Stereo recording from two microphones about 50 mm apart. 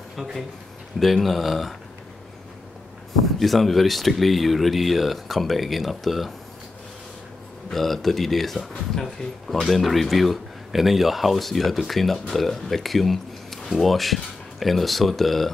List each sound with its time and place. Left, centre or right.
0.1 s speech: centre
3.3 s speech: centre
7.7 s speech: centre